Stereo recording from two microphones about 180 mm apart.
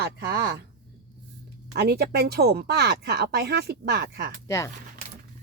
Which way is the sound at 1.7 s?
60° right (ahead or behind).